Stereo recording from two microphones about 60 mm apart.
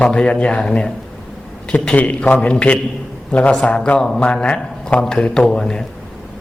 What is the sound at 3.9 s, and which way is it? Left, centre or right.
A man's voice, centre.